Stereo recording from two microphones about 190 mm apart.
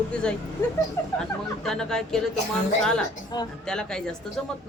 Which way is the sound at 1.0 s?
15° left (ahead or behind).